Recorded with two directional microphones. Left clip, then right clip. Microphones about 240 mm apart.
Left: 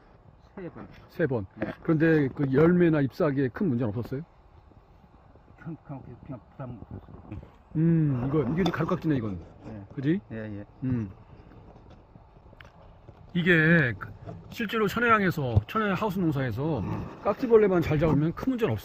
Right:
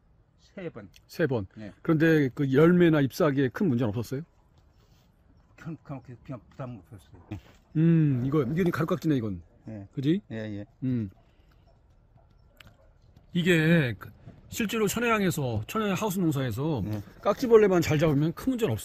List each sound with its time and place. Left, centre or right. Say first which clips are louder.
0.9 s speech: even; centre
5.6 s speech: right 1 dB; centre
7.7 s speech: right 1 dB; centre
8.3 s speech: left 1 dB; centre
10.3 s speech: right 1 dB; right
10.8 s speech: even; centre
13.3 s speech: left 2 dB; centre